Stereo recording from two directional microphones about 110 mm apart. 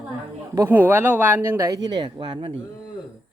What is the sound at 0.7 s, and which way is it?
Speech, 15° right (ahead or behind).